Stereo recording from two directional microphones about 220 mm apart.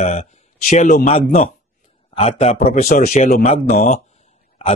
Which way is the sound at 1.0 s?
25° left (ahead or behind).